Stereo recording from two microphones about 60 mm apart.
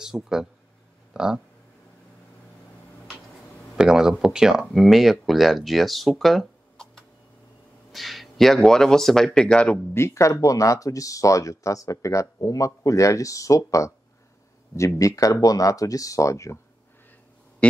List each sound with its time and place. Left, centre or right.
0.0 s speech: centre
3.7 s speech: centre
9.9 s speech: left